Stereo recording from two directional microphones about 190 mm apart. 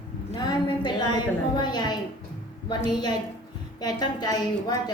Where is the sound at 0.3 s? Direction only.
20° left (ahead or behind).